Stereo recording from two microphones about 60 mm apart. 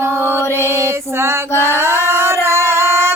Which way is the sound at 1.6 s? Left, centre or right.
Right.